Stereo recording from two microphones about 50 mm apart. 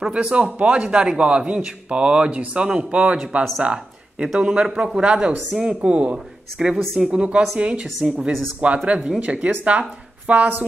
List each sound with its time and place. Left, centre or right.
0.1 s a man's voice: right
3.6 s a sound: right
4.4 s a man's voice: right
5.5 s speech: centre
5.8 s a man's voice: right